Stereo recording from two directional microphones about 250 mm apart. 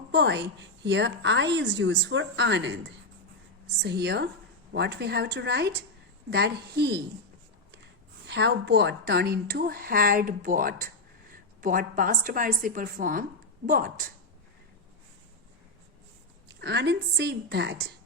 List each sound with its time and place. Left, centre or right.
0.1 s a woman's voice: right
8.3 s a woman's voice: right
16.6 s a woman's voice: right